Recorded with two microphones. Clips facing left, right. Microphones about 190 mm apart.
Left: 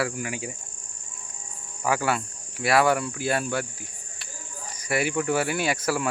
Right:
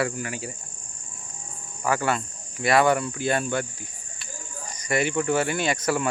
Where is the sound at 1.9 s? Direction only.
10° left (ahead or behind).